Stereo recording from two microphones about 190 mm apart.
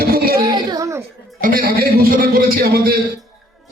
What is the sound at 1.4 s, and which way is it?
A man's voice, 50° right (ahead or behind).